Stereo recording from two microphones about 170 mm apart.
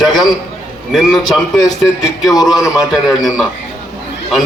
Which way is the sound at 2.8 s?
Centre (ahead or behind).